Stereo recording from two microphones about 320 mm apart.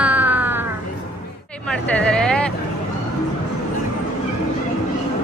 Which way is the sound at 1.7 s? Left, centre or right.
Centre.